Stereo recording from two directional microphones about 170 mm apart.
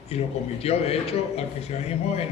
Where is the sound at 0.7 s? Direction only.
35° left (ahead or behind).